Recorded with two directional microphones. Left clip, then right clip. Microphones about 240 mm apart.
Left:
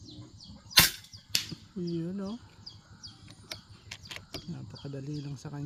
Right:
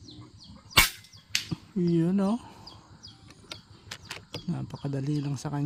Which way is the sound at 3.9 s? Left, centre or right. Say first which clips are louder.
Right 2 dB; right.